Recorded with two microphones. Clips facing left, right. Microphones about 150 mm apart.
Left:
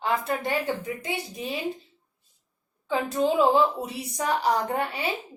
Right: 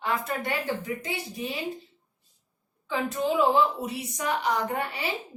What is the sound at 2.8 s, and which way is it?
A woman's voice, 25° left (ahead or behind).